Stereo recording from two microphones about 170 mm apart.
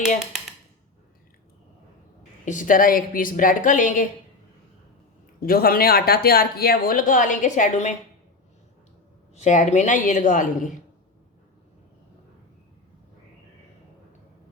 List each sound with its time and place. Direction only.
2.4 s a woman's voice: 50° left (ahead or behind)
5.4 s speech: 60° left (ahead or behind); by 7.9 s 45° left (ahead or behind)
9.3 s a woman's voice: 45° left (ahead or behind)